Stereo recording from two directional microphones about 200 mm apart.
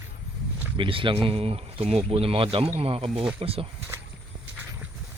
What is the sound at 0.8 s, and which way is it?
Speech, 25° right (ahead or behind).